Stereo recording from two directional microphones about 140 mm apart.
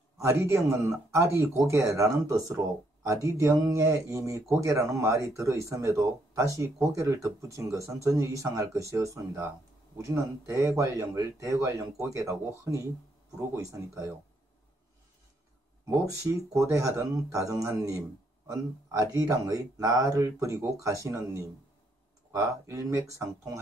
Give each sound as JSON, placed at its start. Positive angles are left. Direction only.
{"t": 0.2, "sound": "a man's voice", "side_deg": -15}
{"t": 16.1, "sound": "a man's voice", "side_deg": -20}